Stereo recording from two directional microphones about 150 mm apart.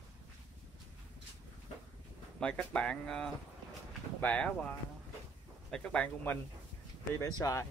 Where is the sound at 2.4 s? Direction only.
5° left (ahead or behind).